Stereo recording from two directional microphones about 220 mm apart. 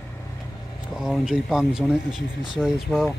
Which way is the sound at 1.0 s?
Centre (ahead or behind).